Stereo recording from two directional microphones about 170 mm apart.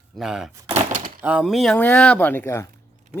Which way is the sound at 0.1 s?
Centre (ahead or behind).